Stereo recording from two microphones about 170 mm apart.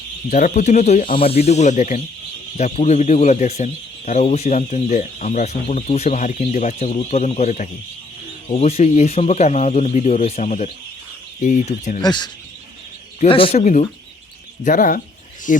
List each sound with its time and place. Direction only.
0.3 s speech: 50° left (ahead or behind)
1.1 s speech: 35° left (ahead or behind)
12.0 s speech: 25° left (ahead or behind); by 15.6 s 50° left (ahead or behind)